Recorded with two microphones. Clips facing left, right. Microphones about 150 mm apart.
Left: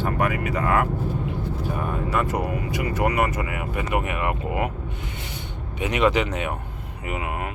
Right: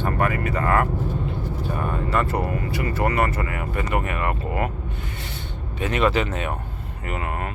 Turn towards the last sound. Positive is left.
turn(degrees=15)  # may be behind; listen again after turning